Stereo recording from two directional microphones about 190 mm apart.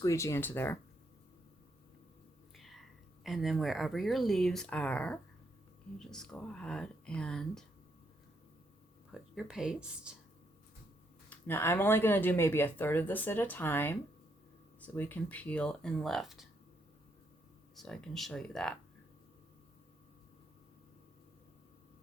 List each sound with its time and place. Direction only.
0.0 s speech: 15° left (ahead or behind)
2.6 s whispering: centre (ahead or behind)
3.2 s speech: centre (ahead or behind)
9.3 s speech: 5° right (ahead or behind)
11.3 s speech: 10° left (ahead or behind)
17.7 s speech: 5° left (ahead or behind)